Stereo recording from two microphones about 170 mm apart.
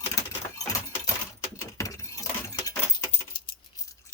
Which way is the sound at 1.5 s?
20° left (ahead or behind).